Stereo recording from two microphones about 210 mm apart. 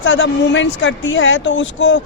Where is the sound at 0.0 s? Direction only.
60° left (ahead or behind).